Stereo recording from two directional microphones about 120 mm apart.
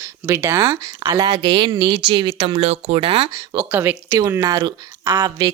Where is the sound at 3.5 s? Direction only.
20° right (ahead or behind).